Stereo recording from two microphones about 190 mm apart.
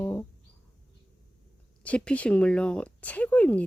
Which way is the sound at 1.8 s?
5° left (ahead or behind).